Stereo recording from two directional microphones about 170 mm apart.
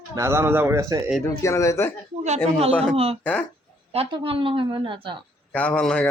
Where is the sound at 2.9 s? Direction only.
35° right (ahead or behind).